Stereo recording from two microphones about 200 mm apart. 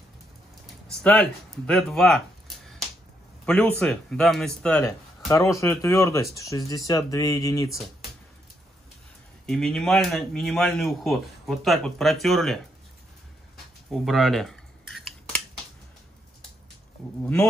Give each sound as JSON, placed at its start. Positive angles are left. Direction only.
{"t": 1.0, "sound": "speech", "side_deg": 5}
{"t": 9.5, "sound": "speech", "side_deg": 5}
{"t": 13.9, "sound": "a sound", "side_deg": 0}
{"t": 17.0, "sound": "speech", "side_deg": 0}